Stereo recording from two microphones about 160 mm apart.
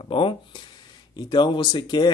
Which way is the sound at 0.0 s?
35° left (ahead or behind).